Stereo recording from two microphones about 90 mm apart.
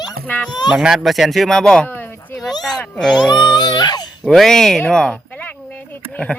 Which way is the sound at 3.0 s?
5° left (ahead or behind).